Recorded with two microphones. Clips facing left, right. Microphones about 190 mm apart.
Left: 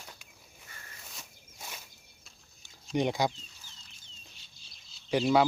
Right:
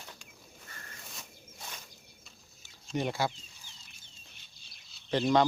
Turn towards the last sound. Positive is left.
turn(degrees=10)  # may be behind; listen again after turning